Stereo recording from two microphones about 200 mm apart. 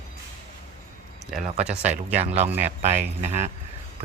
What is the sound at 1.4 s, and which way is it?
Speech, 35° right (ahead or behind).